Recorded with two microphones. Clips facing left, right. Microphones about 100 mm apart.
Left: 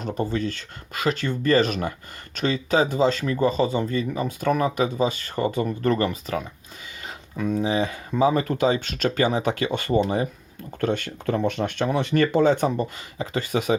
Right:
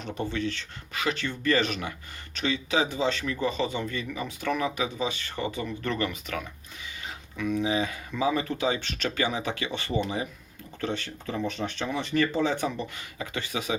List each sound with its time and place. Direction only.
0.0 s speech: 40° left (ahead or behind)